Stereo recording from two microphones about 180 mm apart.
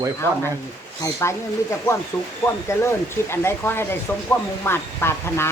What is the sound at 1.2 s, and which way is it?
Speech, 15° left (ahead or behind).